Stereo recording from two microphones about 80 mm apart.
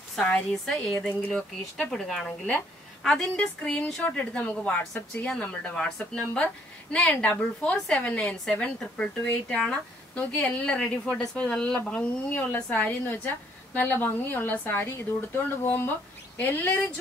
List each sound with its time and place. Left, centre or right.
0.2 s speech: centre
0.5 s a woman's voice: centre
3.3 s a woman's voice: centre